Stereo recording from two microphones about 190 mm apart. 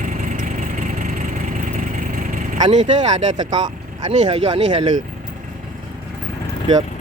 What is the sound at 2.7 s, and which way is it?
Speech, 40° right (ahead or behind).